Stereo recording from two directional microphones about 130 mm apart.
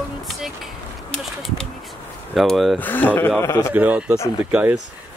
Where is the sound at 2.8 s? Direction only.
15° left (ahead or behind).